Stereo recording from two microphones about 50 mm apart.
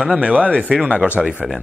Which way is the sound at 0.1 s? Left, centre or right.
Right.